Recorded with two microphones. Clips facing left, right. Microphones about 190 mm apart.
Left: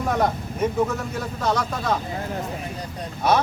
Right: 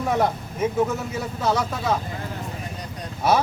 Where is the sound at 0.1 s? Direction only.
5° right (ahead or behind).